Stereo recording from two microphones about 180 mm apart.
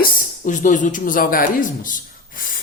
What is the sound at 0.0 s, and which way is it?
Speech, 45° left (ahead or behind).